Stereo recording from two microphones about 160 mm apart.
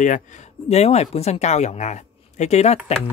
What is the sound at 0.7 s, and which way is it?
Speech, 40° left (ahead or behind).